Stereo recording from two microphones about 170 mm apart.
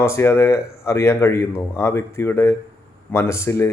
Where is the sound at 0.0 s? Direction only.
15° left (ahead or behind).